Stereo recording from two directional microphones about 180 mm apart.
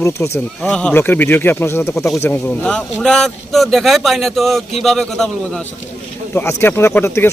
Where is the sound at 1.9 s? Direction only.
Centre (ahead or behind).